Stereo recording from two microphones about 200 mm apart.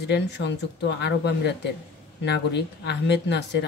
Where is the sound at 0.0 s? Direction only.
60° left (ahead or behind).